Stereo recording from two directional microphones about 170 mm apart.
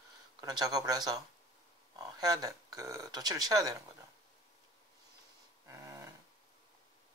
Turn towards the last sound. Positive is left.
turn(degrees=-15)  # may be behind; listen again after turning